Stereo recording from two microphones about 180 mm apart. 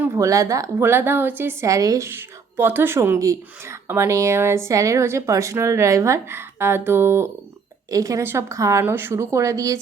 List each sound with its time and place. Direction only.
0.0 s a woman's voice: 20° right (ahead or behind)